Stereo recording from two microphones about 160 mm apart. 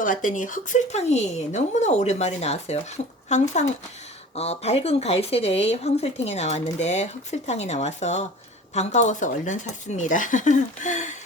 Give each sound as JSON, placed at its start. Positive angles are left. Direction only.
{"t": 0.0, "sound": "speech", "side_deg": 55}